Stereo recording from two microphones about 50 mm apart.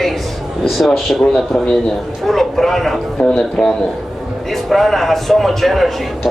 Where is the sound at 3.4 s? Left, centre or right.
Left.